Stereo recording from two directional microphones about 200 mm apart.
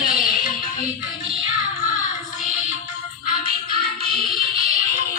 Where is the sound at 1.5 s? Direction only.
40° left (ahead or behind).